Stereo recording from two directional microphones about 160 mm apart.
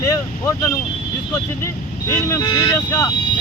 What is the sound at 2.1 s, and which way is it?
Speech, 20° left (ahead or behind).